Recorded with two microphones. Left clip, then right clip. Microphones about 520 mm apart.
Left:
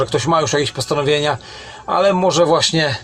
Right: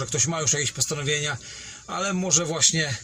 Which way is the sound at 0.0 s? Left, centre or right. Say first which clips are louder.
Left 11 dB; left.